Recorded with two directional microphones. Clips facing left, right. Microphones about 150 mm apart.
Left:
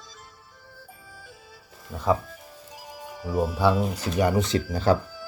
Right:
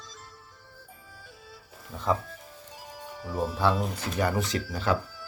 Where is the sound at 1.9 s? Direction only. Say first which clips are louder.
Left 4 dB; 10° left (ahead or behind).